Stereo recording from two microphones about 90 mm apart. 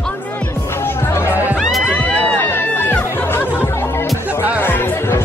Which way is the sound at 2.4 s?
25° left (ahead or behind).